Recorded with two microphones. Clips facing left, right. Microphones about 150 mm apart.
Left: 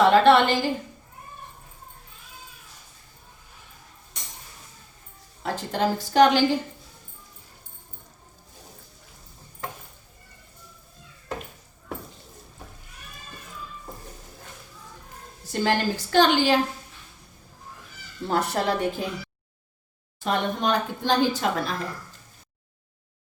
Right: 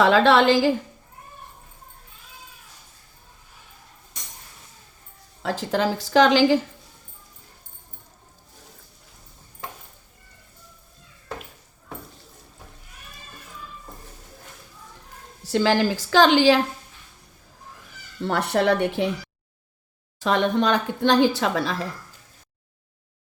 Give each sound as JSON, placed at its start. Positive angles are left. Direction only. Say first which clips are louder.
{"t": 0.0, "sound": "speech", "louder": "even", "side_deg": -90}
{"t": 5.4, "sound": "speech", "louder": "right 2 dB", "side_deg": -90}
{"t": 15.5, "sound": "speech", "louder": "right 4 dB", "side_deg": -90}
{"t": 18.3, "sound": "a woman's voice", "louder": "right 4 dB", "side_deg": -70}
{"t": 20.1, "sound": "speech", "louder": "right 5 dB", "side_deg": -90}